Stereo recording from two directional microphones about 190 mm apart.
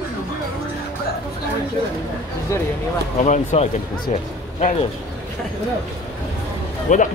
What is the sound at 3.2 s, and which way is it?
A man's voice, 35° left (ahead or behind).